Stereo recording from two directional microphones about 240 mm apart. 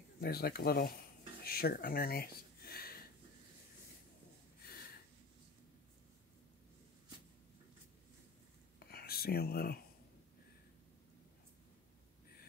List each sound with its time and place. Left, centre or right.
0.2 s speech: left
8.7 s whispering: left